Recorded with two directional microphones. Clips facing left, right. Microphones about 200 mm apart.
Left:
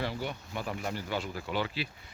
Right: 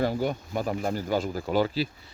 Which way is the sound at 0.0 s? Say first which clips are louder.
Right 9 dB; 45° right (ahead or behind).